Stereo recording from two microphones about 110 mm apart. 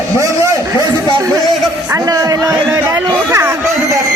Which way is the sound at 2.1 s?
30° right (ahead or behind).